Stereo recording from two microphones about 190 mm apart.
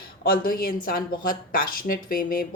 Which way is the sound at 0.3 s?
50° left (ahead or behind).